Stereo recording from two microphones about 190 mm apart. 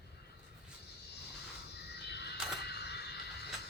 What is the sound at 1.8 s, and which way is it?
Neigh, 60° left (ahead or behind).